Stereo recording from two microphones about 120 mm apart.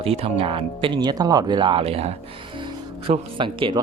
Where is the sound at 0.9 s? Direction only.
30° right (ahead or behind); by 2.1 s 55° right (ahead or behind).